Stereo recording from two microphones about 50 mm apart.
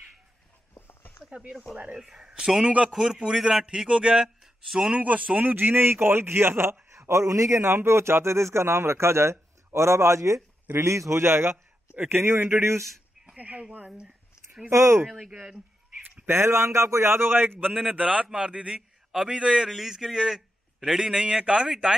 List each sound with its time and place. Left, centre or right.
0.7 s a sound: left
1.3 s a man's voice: centre
2.6 s a man's voice: right
2.9 s a man's voice: centre
4.9 s a man's voice: right
13.4 s speech: right
13.8 s a sound: centre
14.7 s a man's voice: right
15.3 s a man's voice: centre
16.3 s a man's voice: right
17.7 s a man's voice: right
19.7 s a man's voice: centre